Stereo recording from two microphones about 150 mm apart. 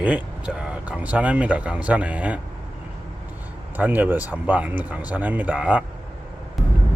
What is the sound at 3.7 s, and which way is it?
Speech, 10° right (ahead or behind).